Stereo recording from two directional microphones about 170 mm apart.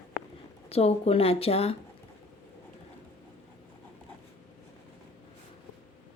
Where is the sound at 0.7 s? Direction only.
35° left (ahead or behind).